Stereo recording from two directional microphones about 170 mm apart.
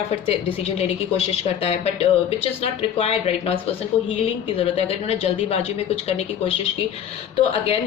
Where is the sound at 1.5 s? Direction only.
35° left (ahead or behind).